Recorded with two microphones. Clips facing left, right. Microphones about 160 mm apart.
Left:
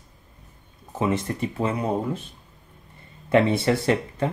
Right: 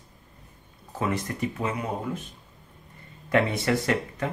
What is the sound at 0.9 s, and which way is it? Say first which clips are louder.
Speech: left 4 dB; 25° left (ahead or behind).